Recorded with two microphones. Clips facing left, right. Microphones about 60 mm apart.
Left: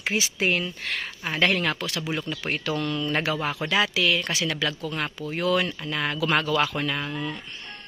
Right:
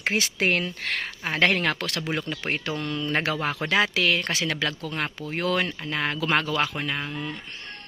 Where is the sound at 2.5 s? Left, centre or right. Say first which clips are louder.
Left 2 dB; right.